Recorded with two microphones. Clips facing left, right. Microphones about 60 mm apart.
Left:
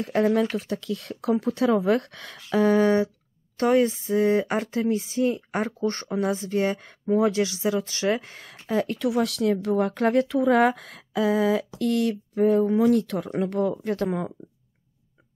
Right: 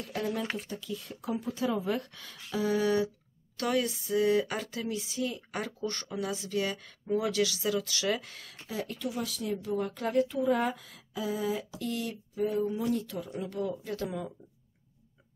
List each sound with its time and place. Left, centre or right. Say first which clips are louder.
0.0 s speech: left 12 dB; left
0.6 s speech: left 8 dB; left
7.2 s speech: left 6 dB; left
10.2 s speech: left 8 dB; left